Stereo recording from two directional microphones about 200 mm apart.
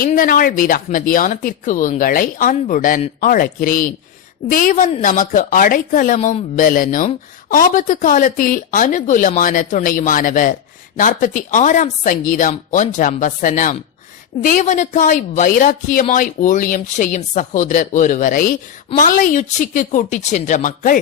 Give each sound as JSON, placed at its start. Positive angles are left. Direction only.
{"t": 0.0, "sound": "a woman's voice", "side_deg": 45}